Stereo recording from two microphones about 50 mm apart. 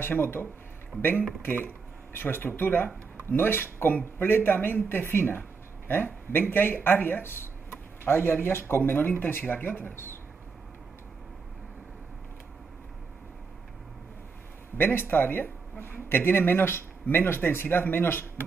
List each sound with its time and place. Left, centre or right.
0.0 s speech: left
14.8 s speech: left